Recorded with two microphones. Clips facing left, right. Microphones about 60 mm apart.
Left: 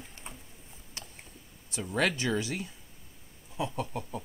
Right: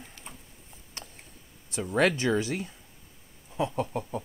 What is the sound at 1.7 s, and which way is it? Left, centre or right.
Speech, right.